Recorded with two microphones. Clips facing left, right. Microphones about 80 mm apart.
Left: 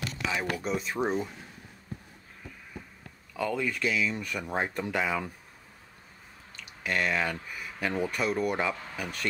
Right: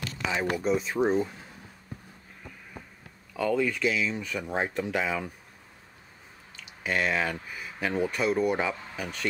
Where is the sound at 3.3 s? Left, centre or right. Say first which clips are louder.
Right 4 dB; centre.